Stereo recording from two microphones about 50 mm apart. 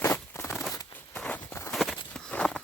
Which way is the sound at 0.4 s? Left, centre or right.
Left.